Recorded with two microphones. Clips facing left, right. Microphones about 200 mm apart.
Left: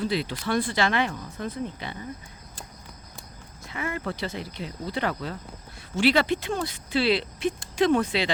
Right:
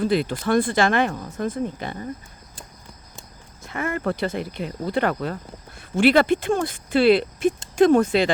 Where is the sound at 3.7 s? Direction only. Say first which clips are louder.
Right 6 dB; 50° right (ahead or behind).